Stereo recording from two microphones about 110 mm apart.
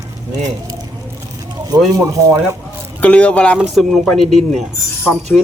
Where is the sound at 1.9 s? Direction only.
30° right (ahead or behind).